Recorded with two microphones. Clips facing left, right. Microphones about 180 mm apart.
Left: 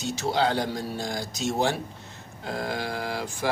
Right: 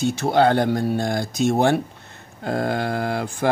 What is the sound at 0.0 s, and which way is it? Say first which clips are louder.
Speech: right 7 dB; 55° right (ahead or behind).